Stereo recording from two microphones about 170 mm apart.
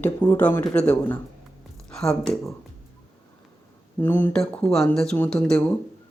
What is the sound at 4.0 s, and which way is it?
Speech, 10° left (ahead or behind).